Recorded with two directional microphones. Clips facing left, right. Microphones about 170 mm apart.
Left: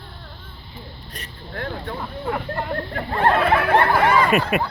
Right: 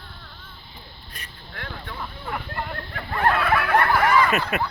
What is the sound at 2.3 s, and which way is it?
Speech, 40° left (ahead or behind).